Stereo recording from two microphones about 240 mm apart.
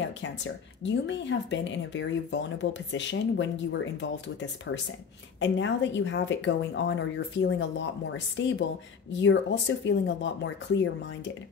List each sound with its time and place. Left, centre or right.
0.2 s speech: left